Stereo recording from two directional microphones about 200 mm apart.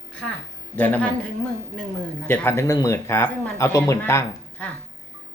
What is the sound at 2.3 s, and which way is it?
A woman's voice, 10° left (ahead or behind).